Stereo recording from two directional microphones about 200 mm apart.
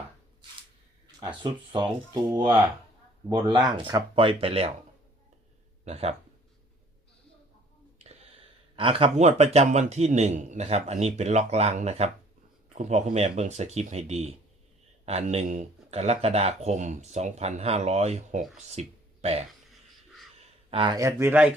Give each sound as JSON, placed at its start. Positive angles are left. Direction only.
{"t": 1.2, "sound": "speech", "side_deg": -25}
{"t": 5.8, "sound": "speech", "side_deg": -30}
{"t": 7.9, "sound": "a sound", "side_deg": -35}
{"t": 8.7, "sound": "a man's voice", "side_deg": -25}
{"t": 20.7, "sound": "speech", "side_deg": -25}